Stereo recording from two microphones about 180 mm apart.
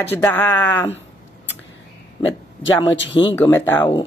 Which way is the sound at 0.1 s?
10° left (ahead or behind).